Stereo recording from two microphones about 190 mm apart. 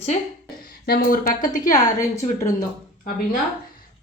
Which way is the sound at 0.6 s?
50° left (ahead or behind).